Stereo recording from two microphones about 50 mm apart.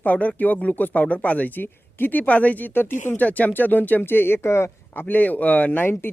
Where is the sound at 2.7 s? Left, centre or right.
Left.